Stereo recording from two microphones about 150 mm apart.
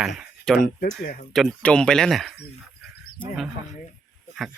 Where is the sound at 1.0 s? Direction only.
70° left (ahead or behind).